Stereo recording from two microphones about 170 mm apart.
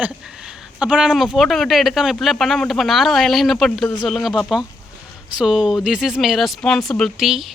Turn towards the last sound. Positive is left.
turn(degrees=0)  # may be behind; listen again after turning